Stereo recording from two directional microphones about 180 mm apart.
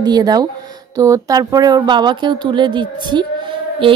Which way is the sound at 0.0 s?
20° right (ahead or behind).